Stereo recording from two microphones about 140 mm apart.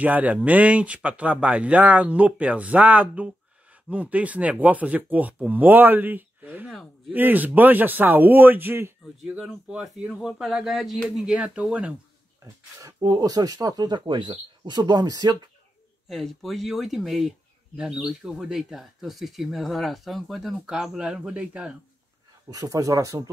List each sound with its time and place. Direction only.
0.0 s a man's voice: 10° right (ahead or behind)
12.4 s speech: 20° right (ahead or behind)
16.1 s speech: centre (ahead or behind)
22.5 s speech: 25° right (ahead or behind)